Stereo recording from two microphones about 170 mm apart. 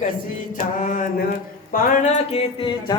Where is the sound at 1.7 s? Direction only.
50° left (ahead or behind); by 2.7 s 35° left (ahead or behind).